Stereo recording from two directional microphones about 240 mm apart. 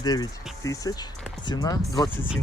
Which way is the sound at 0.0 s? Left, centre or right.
Centre.